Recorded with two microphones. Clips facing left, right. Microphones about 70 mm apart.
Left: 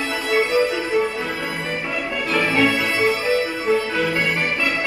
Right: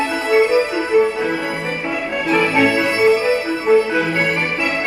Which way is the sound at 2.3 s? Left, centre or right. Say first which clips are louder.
Right 4 dB; right.